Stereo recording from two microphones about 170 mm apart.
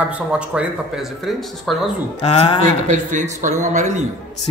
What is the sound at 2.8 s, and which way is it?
A man's voice, 45° right (ahead or behind).